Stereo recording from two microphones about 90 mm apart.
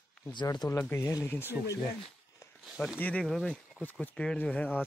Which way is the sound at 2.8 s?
15° left (ahead or behind).